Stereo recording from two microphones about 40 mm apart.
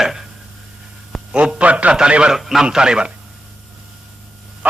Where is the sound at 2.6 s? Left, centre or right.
Right.